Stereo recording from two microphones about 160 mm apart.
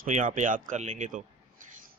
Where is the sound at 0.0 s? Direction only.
55° right (ahead or behind).